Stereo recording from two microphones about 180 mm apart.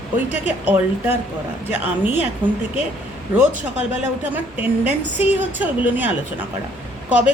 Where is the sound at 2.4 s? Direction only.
25° right (ahead or behind).